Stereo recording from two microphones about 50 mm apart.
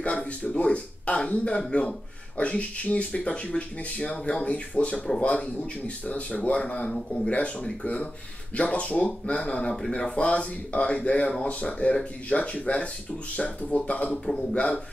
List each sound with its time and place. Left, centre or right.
0.0 s speech: left
14.1 s a man's voice: centre
14.5 s speech: left